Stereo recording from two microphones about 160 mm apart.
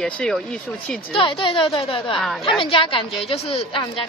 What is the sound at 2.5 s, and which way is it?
A woman's voice, 35° left (ahead or behind).